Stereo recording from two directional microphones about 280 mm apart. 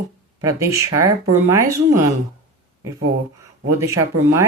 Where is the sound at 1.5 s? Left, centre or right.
Centre.